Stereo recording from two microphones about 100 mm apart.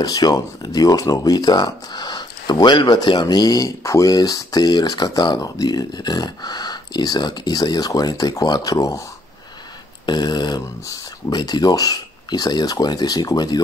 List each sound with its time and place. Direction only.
0.0 s speech: 40° left (ahead or behind)
10.0 s speech: 45° left (ahead or behind)